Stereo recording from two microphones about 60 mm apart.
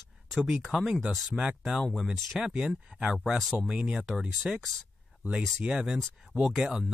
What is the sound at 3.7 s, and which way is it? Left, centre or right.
Speech, centre.